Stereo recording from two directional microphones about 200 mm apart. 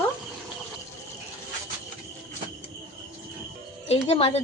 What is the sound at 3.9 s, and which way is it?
Speech, 30° left (ahead or behind).